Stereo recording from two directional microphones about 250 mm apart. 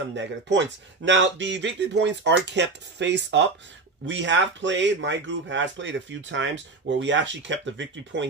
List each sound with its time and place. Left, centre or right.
0.1 s speech: right